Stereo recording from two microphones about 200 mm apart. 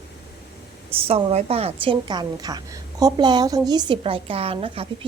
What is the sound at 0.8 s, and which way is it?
A woman's voice, 30° right (ahead or behind).